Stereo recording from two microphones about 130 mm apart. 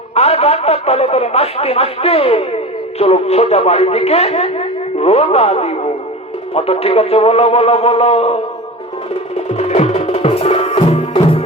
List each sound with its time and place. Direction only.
0.1 s speech: 55° left (ahead or behind)
9.6 s music: 55° left (ahead or behind)